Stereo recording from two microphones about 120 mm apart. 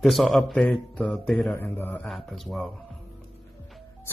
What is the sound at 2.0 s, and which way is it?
Speech, centre (ahead or behind).